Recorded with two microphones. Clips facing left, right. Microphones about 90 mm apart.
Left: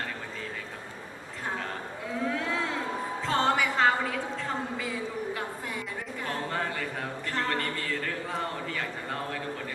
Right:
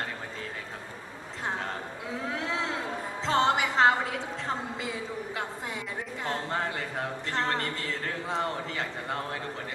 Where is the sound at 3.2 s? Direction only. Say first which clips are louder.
Right 1 dB; 20° right (ahead or behind).